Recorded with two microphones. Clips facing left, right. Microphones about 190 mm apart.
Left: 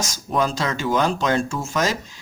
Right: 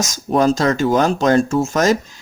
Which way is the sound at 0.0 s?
45° right (ahead or behind).